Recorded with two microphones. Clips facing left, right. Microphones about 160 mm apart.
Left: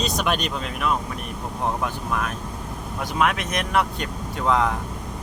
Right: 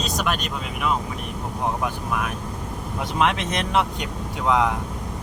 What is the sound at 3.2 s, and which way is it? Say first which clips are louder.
Speech: right 1 dB; 25° right (ahead or behind).